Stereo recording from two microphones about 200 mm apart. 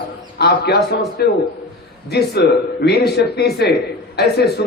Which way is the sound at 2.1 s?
55° left (ahead or behind).